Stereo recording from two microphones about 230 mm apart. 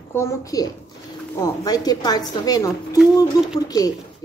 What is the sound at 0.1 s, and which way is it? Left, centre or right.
A woman's voice, centre.